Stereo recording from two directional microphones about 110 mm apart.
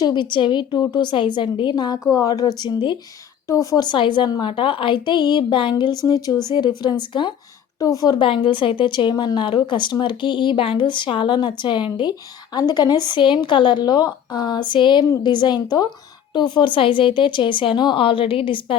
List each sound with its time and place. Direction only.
0.0 s a woman's voice: 45° left (ahead or behind)
3.5 s a woman's voice: 30° left (ahead or behind)
3.8 s a woman's voice: 45° left (ahead or behind)
7.8 s speech: 30° left (ahead or behind)
8.2 s a woman's voice: 50° left (ahead or behind)